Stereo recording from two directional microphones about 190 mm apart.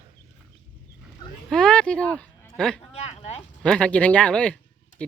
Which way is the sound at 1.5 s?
5° left (ahead or behind).